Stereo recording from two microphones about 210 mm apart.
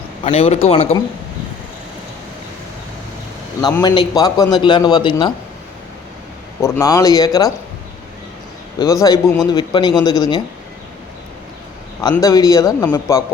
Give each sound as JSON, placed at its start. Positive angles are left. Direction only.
{"t": 0.3, "sound": "a man's voice", "side_deg": 30}
{"t": 3.6, "sound": "a man's voice", "side_deg": 20}
{"t": 6.6, "sound": "speech", "side_deg": 15}
{"t": 8.8, "sound": "a man's voice", "side_deg": 15}
{"t": 12.1, "sound": "speech", "side_deg": 15}